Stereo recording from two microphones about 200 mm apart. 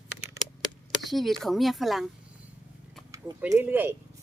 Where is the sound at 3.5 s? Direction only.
10° right (ahead or behind).